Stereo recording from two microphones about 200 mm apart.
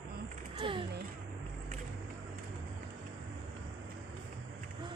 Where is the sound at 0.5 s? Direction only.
25° right (ahead or behind).